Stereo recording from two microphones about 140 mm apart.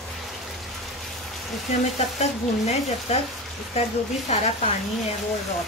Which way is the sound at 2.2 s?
55° left (ahead or behind).